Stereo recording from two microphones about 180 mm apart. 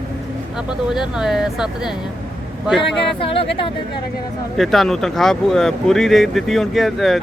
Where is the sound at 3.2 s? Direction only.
30° left (ahead or behind).